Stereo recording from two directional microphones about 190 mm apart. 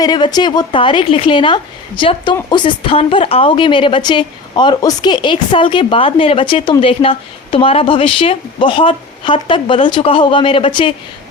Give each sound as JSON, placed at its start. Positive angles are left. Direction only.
{"t": 0.0, "sound": "a woman's voice", "side_deg": 20}